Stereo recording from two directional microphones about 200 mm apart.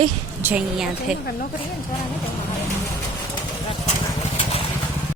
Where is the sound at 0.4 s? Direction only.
5° right (ahead or behind).